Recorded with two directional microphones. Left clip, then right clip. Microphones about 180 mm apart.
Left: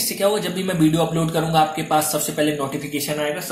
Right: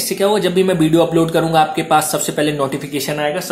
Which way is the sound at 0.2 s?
25° right (ahead or behind).